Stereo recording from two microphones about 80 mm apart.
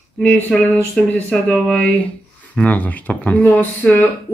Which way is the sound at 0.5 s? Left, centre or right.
Centre.